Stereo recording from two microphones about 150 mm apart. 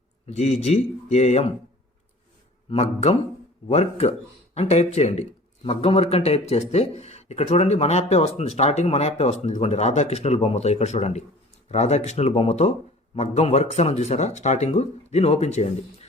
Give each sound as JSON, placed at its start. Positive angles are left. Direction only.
{"t": 0.3, "sound": "speech", "side_deg": 45}
{"t": 2.6, "sound": "speech", "side_deg": 45}